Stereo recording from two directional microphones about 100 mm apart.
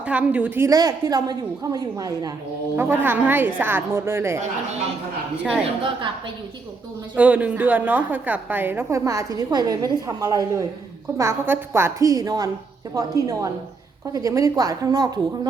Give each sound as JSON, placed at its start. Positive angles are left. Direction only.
{"t": 0.0, "sound": "a woman's voice", "side_deg": -15}
{"t": 0.6, "sound": "a woman's voice", "side_deg": -40}
{"t": 2.7, "sound": "a woman's voice", "side_deg": -20}
{"t": 5.4, "sound": "a woman's voice", "side_deg": -10}
{"t": 7.2, "sound": "a woman's voice", "side_deg": -15}
{"t": 11.2, "sound": "a woman's voice", "side_deg": -25}